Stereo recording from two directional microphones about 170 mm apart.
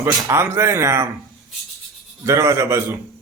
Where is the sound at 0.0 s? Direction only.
15° right (ahead or behind).